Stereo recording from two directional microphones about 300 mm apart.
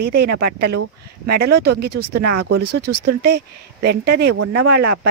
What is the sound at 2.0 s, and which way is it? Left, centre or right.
Speech, right.